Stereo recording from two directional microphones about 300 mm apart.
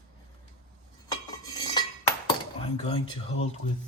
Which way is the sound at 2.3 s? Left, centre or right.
Centre.